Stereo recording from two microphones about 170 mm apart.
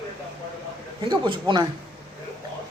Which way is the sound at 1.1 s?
25° right (ahead or behind).